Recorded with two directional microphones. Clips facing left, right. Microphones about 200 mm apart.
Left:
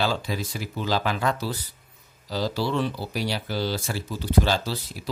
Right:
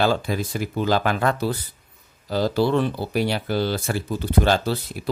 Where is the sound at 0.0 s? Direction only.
55° right (ahead or behind).